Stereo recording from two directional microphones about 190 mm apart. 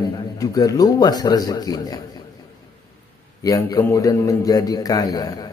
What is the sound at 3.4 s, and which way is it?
A man's voice, 20° left (ahead or behind).